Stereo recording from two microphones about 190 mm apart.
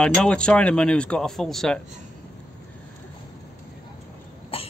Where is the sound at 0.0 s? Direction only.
5° left (ahead or behind).